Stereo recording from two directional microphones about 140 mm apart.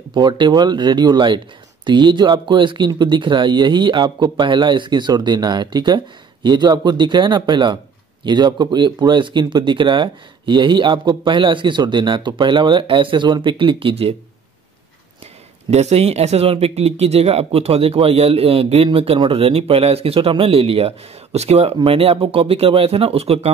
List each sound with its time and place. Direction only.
0.1 s speech: 30° right (ahead or behind)
15.7 s speech: 50° right (ahead or behind)